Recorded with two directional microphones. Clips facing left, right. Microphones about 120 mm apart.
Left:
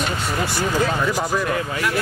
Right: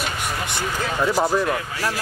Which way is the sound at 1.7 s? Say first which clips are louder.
Left 3 dB; 35° right (ahead or behind).